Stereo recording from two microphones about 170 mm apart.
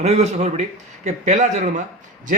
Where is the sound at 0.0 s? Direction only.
40° right (ahead or behind).